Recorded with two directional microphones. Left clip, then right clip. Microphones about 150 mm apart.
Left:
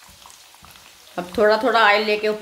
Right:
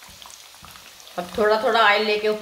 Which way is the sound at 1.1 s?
75° left (ahead or behind).